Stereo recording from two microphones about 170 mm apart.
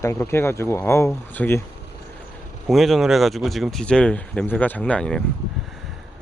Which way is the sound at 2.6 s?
Centre (ahead or behind).